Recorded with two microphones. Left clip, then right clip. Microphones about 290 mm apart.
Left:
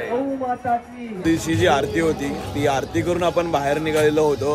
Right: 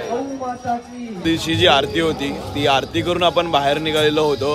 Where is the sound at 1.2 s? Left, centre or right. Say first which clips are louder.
Right 3 dB; centre.